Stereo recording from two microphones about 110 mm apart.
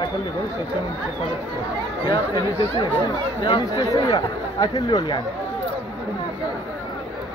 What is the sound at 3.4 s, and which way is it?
Speech, 45° left (ahead or behind).